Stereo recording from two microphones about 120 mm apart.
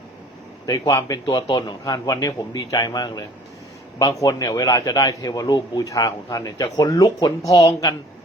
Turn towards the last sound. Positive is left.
turn(degrees=30)  # may be behind; listen again after turning